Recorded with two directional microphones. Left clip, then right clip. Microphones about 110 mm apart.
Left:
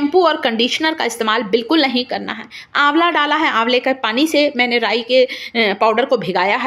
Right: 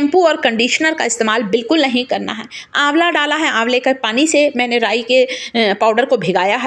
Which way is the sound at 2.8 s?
30° right (ahead or behind).